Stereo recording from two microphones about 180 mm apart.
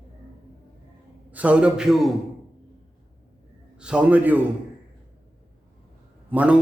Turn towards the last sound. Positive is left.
turn(degrees=-10)  # may be behind; listen again after turning